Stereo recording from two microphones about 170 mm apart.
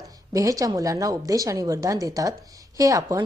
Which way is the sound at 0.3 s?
20° right (ahead or behind).